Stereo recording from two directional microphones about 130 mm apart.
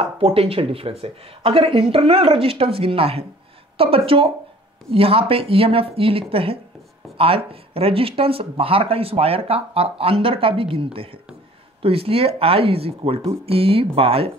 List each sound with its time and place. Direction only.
0.0 s speech: 45° right (ahead or behind)